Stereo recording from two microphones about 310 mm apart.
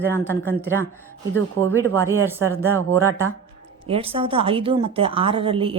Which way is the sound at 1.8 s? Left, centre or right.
Centre.